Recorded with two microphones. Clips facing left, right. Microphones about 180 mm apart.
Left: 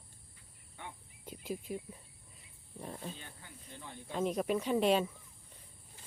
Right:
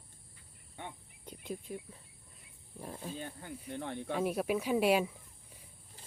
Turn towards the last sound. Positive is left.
turn(degrees=-10)  # may be behind; listen again after turning